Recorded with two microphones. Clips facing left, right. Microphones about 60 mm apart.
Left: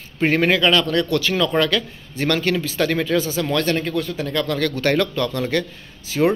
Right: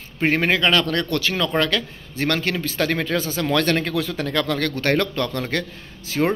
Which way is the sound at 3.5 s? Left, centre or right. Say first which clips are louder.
Right 1 dB; right.